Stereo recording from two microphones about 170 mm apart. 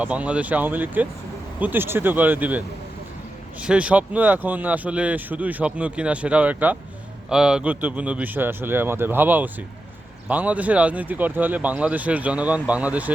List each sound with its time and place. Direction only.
0.0 s speech: 10° right (ahead or behind)